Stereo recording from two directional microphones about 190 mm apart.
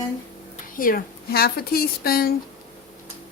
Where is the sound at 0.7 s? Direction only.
50° left (ahead or behind).